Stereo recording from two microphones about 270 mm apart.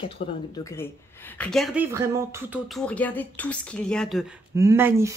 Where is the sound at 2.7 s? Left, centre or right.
Centre.